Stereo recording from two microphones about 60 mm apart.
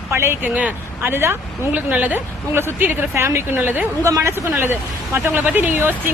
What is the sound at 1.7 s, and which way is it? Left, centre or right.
Speech, right.